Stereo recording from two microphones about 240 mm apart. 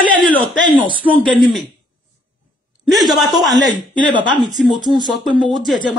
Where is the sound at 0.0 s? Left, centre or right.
Left.